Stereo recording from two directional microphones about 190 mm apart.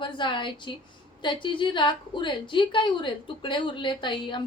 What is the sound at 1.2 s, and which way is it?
A woman's voice, 25° left (ahead or behind).